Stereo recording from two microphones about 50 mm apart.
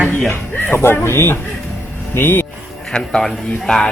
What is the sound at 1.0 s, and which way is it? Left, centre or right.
Speech, left.